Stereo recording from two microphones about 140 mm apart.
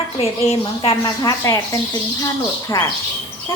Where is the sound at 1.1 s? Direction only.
25° left (ahead or behind).